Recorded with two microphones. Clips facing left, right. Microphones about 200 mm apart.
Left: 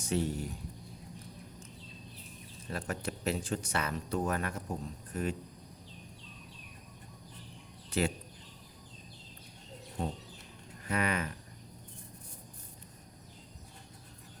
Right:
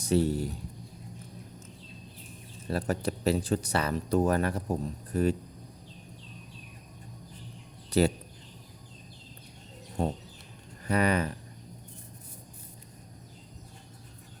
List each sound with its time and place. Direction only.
0.0 s speech: 35° right (ahead or behind)
2.6 s speech: 35° right (ahead or behind)
7.9 s speech: 35° right (ahead or behind)
10.8 s speech: 35° right (ahead or behind)